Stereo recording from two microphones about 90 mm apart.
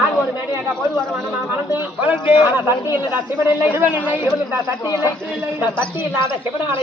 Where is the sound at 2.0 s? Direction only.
20° right (ahead or behind).